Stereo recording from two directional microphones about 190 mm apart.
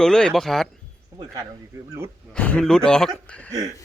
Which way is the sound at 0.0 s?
5° left (ahead or behind).